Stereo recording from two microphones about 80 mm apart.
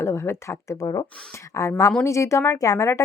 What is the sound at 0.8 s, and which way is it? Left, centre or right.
Speech, left.